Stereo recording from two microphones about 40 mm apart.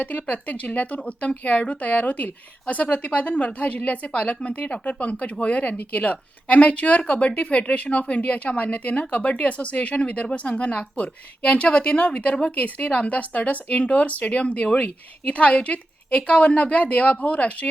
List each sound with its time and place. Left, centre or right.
0.0 s a woman's voice: left